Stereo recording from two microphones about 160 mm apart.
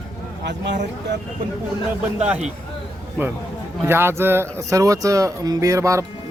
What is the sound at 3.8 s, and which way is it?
Speech, 15° right (ahead or behind).